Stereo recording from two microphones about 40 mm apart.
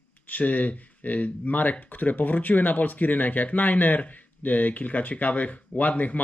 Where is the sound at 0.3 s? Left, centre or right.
Left.